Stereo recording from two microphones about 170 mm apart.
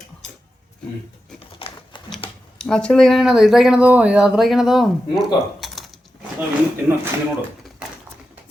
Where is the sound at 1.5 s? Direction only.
30° left (ahead or behind).